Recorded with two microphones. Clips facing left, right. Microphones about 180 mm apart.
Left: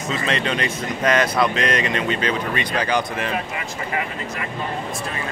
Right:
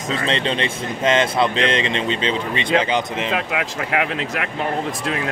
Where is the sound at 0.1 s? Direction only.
30° right (ahead or behind).